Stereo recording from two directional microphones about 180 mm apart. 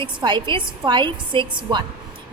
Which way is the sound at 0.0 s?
25° right (ahead or behind).